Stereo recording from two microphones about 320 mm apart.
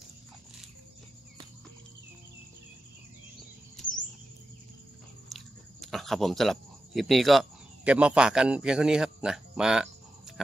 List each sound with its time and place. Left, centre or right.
5.3 s speech: centre